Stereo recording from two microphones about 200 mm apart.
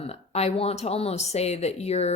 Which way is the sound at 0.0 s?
30° left (ahead or behind).